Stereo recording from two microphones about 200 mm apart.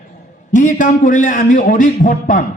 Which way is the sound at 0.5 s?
40° left (ahead or behind).